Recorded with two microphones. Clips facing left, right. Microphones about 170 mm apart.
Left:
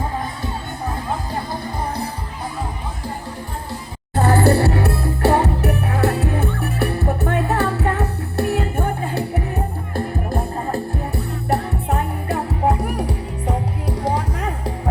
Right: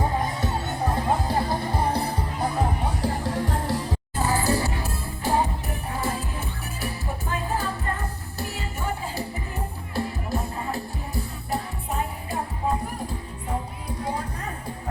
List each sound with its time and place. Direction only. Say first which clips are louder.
3.0 s music: right 4 dB; 90° right
4.1 s music: left 9 dB; 65° left (ahead or behind)
14.0 s music: left 7 dB; 90° left